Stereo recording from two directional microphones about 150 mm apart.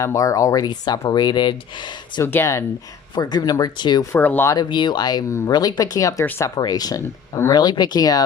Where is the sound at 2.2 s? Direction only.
15° left (ahead or behind).